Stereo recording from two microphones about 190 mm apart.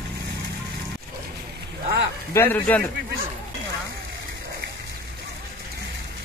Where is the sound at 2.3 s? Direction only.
10° left (ahead or behind).